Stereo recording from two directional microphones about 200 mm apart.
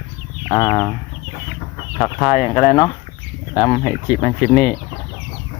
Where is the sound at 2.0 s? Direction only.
20° left (ahead or behind).